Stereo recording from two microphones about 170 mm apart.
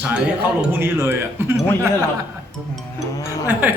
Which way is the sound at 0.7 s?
15° right (ahead or behind).